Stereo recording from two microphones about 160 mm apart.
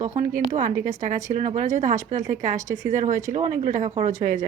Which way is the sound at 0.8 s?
55° right (ahead or behind).